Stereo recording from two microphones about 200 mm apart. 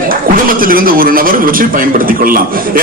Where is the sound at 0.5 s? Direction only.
45° right (ahead or behind).